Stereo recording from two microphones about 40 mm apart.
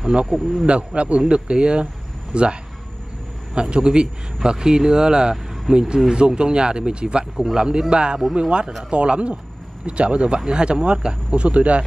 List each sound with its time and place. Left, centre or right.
0.0 s speech: right
3.7 s speech: right